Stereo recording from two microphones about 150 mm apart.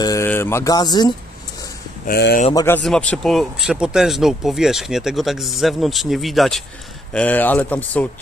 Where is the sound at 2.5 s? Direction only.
25° left (ahead or behind).